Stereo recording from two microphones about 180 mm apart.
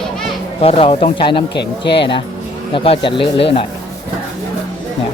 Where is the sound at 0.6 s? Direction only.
30° left (ahead or behind).